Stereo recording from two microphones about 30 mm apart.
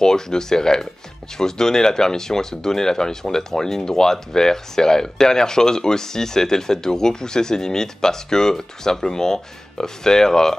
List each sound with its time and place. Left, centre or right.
0.0 s speech: left